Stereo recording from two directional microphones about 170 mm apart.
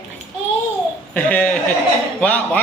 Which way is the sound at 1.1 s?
10° left (ahead or behind).